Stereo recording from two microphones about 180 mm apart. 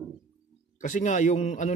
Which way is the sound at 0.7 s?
45° left (ahead or behind).